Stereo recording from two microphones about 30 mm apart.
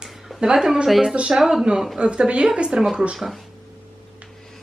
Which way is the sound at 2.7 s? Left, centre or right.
Centre.